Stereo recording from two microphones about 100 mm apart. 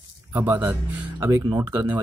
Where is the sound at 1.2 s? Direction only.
30° right (ahead or behind).